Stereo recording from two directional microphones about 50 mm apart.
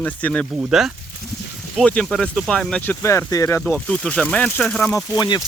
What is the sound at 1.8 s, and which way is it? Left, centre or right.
Speech, centre.